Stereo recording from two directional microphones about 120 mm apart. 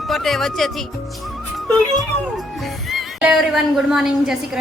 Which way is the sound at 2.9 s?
5° right (ahead or behind).